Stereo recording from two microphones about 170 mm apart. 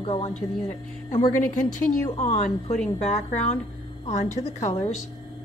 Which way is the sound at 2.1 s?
40° left (ahead or behind).